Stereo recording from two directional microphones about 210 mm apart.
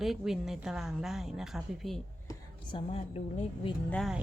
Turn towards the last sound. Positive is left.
turn(degrees=0)  # may be behind; listen again after turning